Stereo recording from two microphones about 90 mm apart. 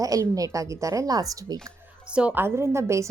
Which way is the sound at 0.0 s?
40° right (ahead or behind).